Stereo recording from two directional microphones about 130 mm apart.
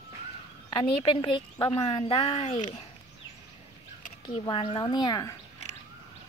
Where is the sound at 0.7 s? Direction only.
40° left (ahead or behind).